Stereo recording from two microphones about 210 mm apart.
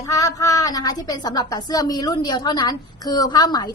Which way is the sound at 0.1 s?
15° left (ahead or behind).